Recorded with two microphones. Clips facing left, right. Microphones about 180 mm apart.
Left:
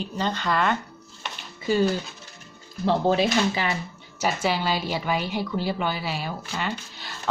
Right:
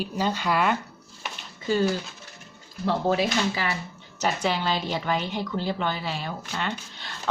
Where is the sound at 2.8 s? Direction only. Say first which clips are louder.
Left 2 dB; 25° left (ahead or behind).